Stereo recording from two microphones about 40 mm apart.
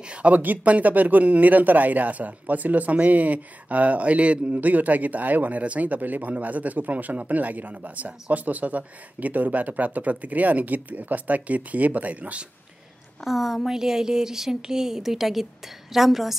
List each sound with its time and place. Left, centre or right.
0.1 s speech: right
4.6 s speech: right
13.2 s a woman's voice: centre